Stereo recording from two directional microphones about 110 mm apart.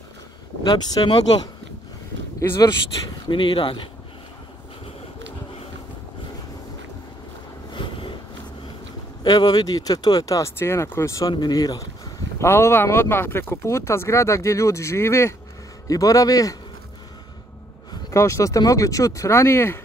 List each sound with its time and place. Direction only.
0.7 s speech: 35° left (ahead or behind)
2.6 s speech: 45° left (ahead or behind)
7.7 s a sound: 45° left (ahead or behind)
9.2 s speech: 40° left (ahead or behind)
12.4 s speech: 25° left (ahead or behind)
18.1 s speech: 25° left (ahead or behind)